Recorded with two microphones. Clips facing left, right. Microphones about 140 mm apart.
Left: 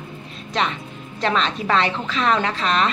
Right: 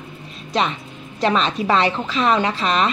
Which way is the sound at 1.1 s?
15° right (ahead or behind).